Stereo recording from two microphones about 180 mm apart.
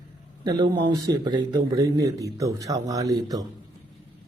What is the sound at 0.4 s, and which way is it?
A man's voice, 25° right (ahead or behind).